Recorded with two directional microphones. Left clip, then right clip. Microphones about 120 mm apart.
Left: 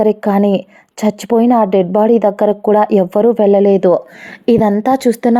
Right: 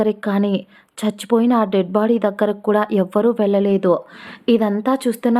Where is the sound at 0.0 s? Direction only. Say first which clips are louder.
Left 7 dB; 30° left (ahead or behind).